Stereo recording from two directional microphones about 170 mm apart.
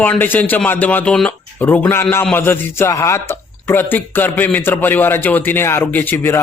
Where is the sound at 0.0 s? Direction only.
10° left (ahead or behind).